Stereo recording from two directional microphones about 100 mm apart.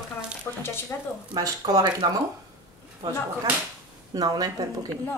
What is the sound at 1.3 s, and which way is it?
Speech, 40° right (ahead or behind).